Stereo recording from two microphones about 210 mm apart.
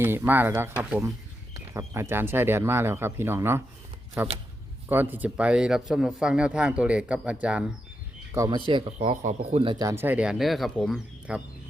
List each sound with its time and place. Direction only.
0.0 s speech: 10° right (ahead or behind)
8.3 s speech: 20° right (ahead or behind)
9.0 s speech: 35° right (ahead or behind); by 11.4 s 5° right (ahead or behind)